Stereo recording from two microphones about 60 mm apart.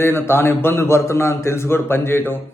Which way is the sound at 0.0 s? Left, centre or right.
Left.